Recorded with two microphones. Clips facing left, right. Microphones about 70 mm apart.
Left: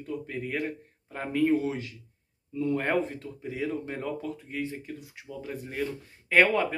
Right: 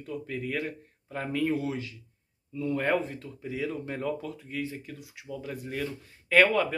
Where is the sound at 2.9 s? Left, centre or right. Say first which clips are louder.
Left 1 dB; left.